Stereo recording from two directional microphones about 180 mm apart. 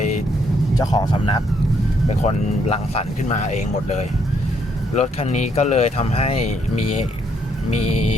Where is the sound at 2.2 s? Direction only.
40° left (ahead or behind).